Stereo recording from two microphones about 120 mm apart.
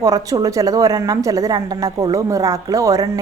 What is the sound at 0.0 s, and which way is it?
A woman's voice, 30° right (ahead or behind).